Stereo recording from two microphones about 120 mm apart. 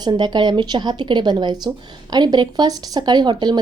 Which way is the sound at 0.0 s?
35° right (ahead or behind).